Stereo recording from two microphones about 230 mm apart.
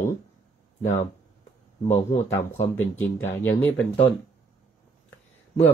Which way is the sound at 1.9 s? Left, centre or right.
Left.